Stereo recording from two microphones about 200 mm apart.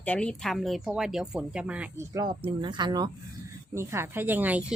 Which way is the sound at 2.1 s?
25° right (ahead or behind).